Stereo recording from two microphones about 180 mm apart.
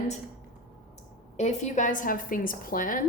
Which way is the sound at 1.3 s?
40° left (ahead or behind).